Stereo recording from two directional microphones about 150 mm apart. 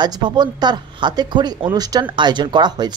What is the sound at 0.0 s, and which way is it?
A woman's voice, 30° right (ahead or behind).